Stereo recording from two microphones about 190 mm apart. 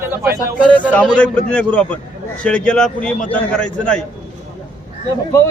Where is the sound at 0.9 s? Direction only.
5° left (ahead or behind).